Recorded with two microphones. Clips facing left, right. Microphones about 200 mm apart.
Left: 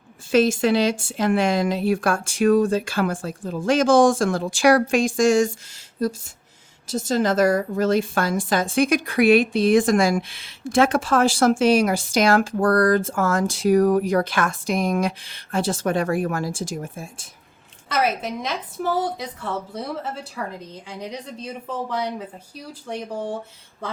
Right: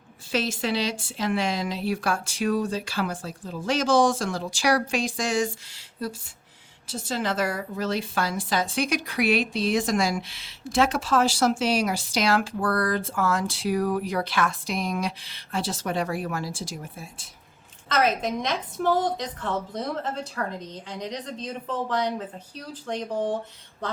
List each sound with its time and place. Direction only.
0.3 s a woman's voice: 50° left (ahead or behind)
17.8 s a woman's voice: 10° left (ahead or behind)